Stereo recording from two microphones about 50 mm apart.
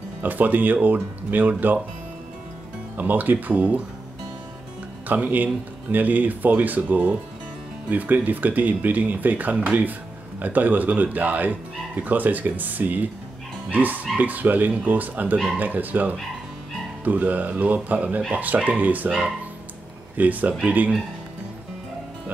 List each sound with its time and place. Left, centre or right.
0.2 s speech: right
3.0 s speech: right
5.0 s speech: right
19.0 s speech: centre
20.2 s speech: right